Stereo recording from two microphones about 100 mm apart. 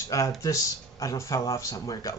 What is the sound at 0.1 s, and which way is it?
Speech, 35° left (ahead or behind).